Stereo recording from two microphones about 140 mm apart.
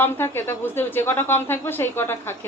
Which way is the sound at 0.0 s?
15° left (ahead or behind).